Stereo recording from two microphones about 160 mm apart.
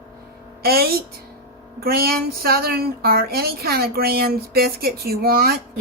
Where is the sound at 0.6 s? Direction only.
75° right (ahead or behind).